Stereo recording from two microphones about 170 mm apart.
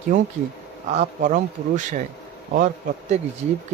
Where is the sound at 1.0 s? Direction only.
50° right (ahead or behind).